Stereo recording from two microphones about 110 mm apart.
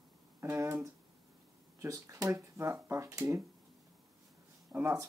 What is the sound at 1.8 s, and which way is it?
Speech, 30° right (ahead or behind).